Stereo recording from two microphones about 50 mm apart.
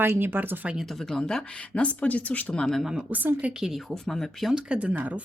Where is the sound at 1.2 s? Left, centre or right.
Centre.